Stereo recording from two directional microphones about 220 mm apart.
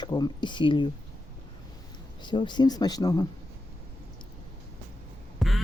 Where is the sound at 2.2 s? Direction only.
20° left (ahead or behind).